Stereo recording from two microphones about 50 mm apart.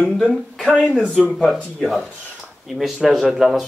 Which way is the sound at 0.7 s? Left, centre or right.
Centre.